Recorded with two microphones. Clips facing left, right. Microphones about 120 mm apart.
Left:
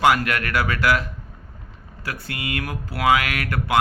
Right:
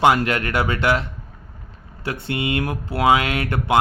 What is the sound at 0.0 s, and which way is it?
Speech, 25° right (ahead or behind).